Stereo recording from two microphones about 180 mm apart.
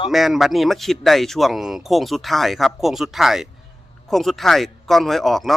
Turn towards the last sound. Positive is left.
turn(degrees=0)  # may be behind; listen again after turning